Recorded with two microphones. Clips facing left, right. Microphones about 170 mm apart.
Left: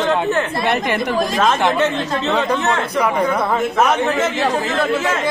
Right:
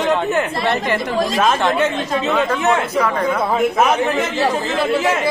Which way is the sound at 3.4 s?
10° right (ahead or behind).